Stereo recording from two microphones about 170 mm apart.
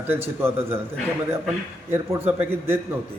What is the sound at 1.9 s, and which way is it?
Speech, 15° right (ahead or behind).